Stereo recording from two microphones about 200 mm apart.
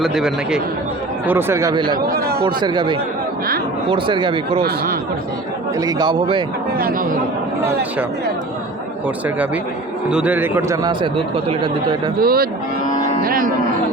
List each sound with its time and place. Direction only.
0.0 s speech: centre (ahead or behind)
1.3 s a man's voice: 10° right (ahead or behind)
2.0 s a man's voice: 50° right (ahead or behind)
2.4 s speech: 20° right (ahead or behind)
5.8 s speech: 20° right (ahead or behind)
6.7 s a man's voice: 45° right (ahead or behind)
10.1 s a man's voice: 5° right (ahead or behind); by 11.9 s 25° right (ahead or behind)
12.2 s a man's voice: 50° right (ahead or behind)